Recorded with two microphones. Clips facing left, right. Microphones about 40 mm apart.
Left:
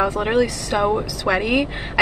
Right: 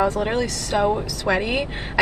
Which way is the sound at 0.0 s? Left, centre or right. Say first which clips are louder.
Left 3 dB; left.